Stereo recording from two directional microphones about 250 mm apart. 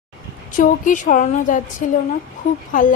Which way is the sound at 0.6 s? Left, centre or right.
Left.